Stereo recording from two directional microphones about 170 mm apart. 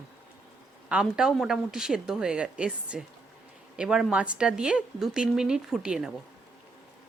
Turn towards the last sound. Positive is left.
turn(degrees=-5)  # may be behind; listen again after turning